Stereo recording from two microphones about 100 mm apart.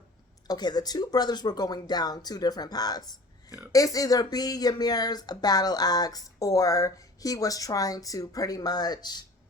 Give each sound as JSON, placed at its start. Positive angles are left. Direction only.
{"t": 0.4, "sound": "speech", "side_deg": 45}